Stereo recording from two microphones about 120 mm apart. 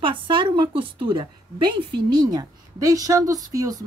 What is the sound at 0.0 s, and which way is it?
A woman's voice, 45° right (ahead or behind).